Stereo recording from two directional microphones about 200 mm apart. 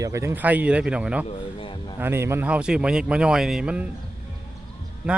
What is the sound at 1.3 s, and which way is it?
Speech, 25° left (ahead or behind).